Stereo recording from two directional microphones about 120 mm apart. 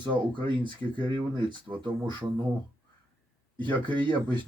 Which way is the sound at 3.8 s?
40° right (ahead or behind).